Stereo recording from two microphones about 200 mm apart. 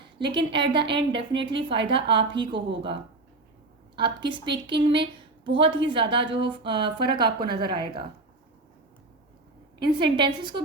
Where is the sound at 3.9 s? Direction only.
25° right (ahead or behind).